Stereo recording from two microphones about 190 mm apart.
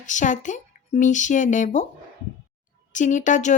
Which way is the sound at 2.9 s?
40° left (ahead or behind).